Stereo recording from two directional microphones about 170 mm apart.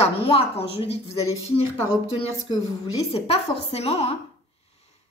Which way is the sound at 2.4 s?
35° left (ahead or behind).